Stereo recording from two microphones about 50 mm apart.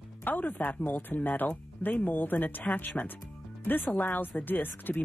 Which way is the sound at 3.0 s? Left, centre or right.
Centre.